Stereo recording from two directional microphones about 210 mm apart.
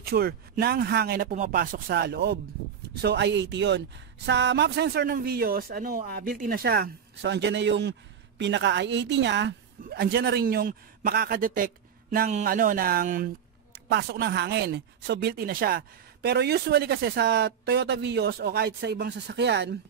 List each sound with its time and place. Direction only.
0.0 s speech: 45° right (ahead or behind)
13.8 s speech: 50° right (ahead or behind)